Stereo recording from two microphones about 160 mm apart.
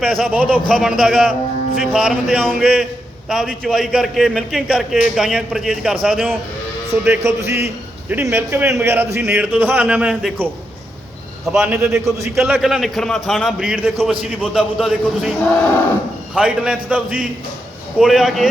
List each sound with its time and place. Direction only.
0.0 s a man's voice: centre (ahead or behind)
7.0 s a man's voice: 15° right (ahead or behind)
11.5 s a man's voice: 5° right (ahead or behind)